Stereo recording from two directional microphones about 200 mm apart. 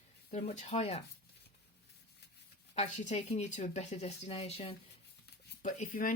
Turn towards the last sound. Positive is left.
turn(degrees=40)  # may be behind; listen again after turning